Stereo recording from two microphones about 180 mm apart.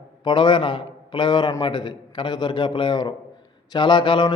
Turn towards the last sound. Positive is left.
turn(degrees=25)  # may be behind; listen again after turning